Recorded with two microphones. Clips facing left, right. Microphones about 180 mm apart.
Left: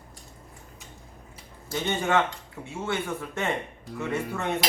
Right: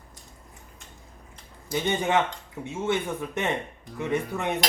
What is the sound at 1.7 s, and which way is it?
A man's voice, 15° right (ahead or behind).